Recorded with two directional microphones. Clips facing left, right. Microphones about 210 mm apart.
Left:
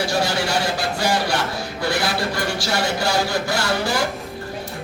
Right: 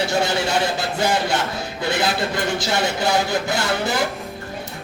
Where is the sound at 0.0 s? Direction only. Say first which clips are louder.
Right 1 dB; 20° right (ahead or behind).